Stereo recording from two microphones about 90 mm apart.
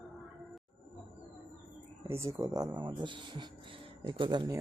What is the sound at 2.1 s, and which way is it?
Speech, 30° right (ahead or behind).